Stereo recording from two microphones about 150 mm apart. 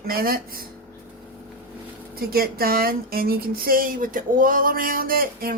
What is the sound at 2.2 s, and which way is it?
Speech, 80° right.